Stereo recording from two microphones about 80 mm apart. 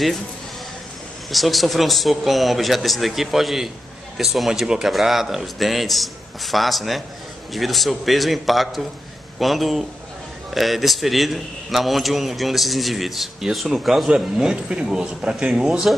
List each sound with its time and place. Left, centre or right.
1.3 s a man's voice: centre